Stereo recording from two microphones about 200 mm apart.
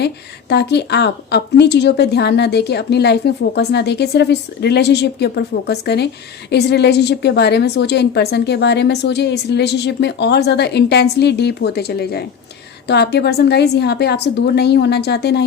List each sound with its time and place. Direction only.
0.0 s a woman's voice: 55° left (ahead or behind)